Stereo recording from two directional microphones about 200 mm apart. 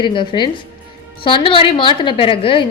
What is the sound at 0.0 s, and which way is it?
A woman's voice, 25° left (ahead or behind).